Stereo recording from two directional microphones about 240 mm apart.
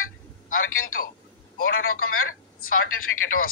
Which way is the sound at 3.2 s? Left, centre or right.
Left.